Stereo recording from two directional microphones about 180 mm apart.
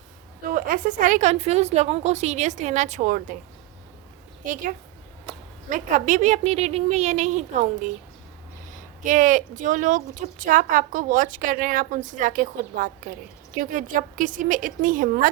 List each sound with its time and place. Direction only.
0.4 s a woman's voice: 50° right (ahead or behind)
5.6 s a woman's voice: 45° right (ahead or behind)